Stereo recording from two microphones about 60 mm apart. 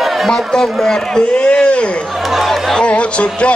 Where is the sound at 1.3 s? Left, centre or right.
Centre.